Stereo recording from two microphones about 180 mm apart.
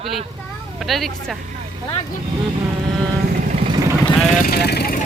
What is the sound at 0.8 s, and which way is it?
Speech, centre (ahead or behind).